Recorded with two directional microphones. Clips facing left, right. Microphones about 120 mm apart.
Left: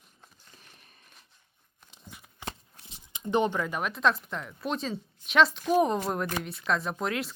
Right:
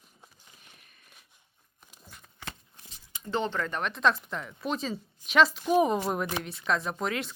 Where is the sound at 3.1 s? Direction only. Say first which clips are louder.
Left 4 dB; 20° left (ahead or behind).